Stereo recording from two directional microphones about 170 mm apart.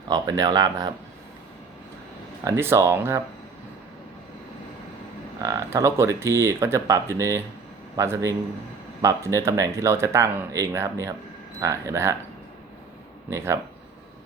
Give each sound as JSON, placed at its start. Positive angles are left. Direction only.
{"t": 0.1, "sound": "speech", "side_deg": -20}
{"t": 2.4, "sound": "speech", "side_deg": -15}
{"t": 5.4, "sound": "speech", "side_deg": -20}
{"t": 13.3, "sound": "speech", "side_deg": -15}